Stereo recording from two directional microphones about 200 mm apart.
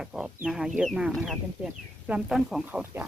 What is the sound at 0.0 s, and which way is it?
Speech, 5° right (ahead or behind).